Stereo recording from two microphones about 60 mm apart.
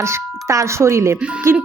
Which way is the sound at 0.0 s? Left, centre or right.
Right.